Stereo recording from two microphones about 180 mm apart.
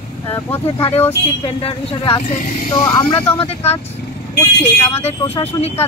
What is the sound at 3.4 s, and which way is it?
Speech, 35° left (ahead or behind).